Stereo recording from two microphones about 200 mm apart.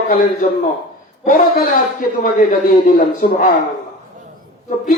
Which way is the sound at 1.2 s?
45° left (ahead or behind).